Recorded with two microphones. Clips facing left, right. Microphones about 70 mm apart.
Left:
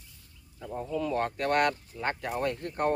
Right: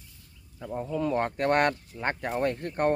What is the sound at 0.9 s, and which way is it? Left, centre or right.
Speech, right.